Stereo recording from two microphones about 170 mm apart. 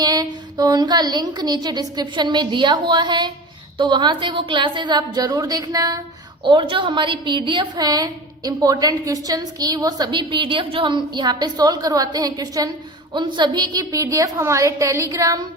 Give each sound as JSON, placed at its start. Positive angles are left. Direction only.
{"t": 0.0, "sound": "a woman's voice", "side_deg": -20}